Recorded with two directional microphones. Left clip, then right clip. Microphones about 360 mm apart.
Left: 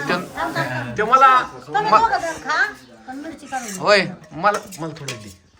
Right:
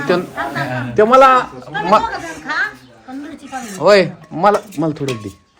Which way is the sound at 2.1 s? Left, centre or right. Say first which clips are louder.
Left 2 dB; left.